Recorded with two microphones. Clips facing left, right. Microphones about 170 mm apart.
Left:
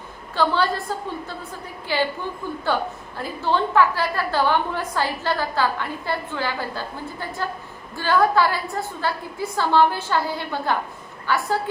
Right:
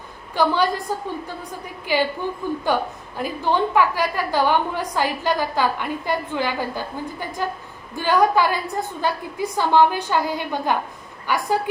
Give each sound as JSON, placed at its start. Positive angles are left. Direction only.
{"t": 0.3, "sound": "a woman's voice", "side_deg": -15}